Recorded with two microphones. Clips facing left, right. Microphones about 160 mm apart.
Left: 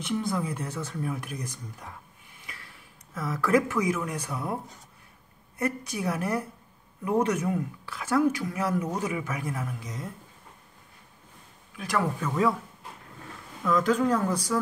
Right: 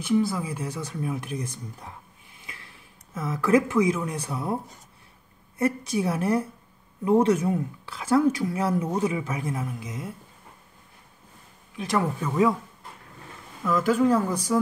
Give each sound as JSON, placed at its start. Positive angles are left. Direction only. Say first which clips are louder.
{"t": 0.0, "sound": "speech", "louder": "right 5 dB", "side_deg": -5}
{"t": 2.4, "sound": "a sound", "louder": "right 1 dB", "side_deg": -25}
{"t": 3.2, "sound": "a woman's voice", "louder": "right 3 dB", "side_deg": -20}
{"t": 5.6, "sound": "a woman's voice", "louder": "right 5 dB", "side_deg": -30}
{"t": 9.8, "sound": "speech", "louder": "right 2 dB", "side_deg": -10}
{"t": 11.7, "sound": "a woman's voice", "louder": "right 2 dB", "side_deg": -25}
{"t": 13.7, "sound": "speech", "louder": "right 2 dB", "side_deg": -5}